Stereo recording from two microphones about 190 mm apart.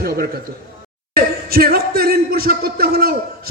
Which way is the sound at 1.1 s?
55° right (ahead or behind).